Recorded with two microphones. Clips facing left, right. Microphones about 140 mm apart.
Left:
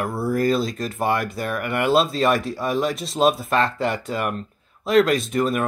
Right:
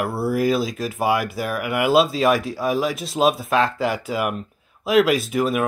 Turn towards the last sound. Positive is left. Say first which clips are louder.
# right 1 dB
turn(degrees=-5)  # may be behind; listen again after turning